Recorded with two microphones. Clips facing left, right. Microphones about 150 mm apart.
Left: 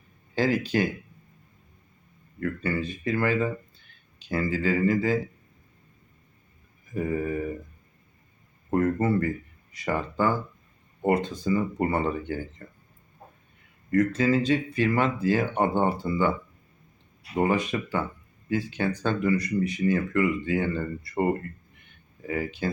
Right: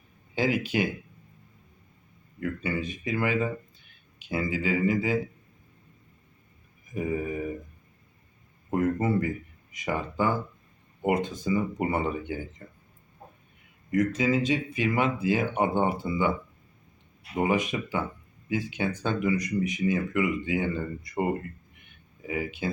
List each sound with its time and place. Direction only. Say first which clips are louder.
0.3 s speech: left 2 dB; 15° right (ahead or behind)
2.6 s speech: left 4 dB; 15° right (ahead or behind)
6.9 s speech: left 2 dB; 10° right (ahead or behind)
8.7 s speech: left 2 dB; 15° right (ahead or behind)
13.9 s speech: left 2 dB; 15° right (ahead or behind)
17.4 s speech: left 1 dB; 15° right (ahead or behind)